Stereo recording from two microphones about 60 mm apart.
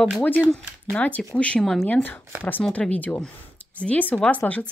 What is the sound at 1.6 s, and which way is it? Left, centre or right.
Speech, centre.